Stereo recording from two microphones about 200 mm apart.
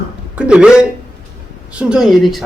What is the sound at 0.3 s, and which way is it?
Speech, 5° right (ahead or behind).